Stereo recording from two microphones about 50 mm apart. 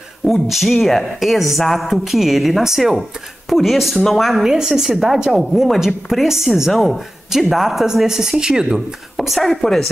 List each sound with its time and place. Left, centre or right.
0.3 s speech: centre
4.4 s speech: centre
9.1 s a woman's voice: centre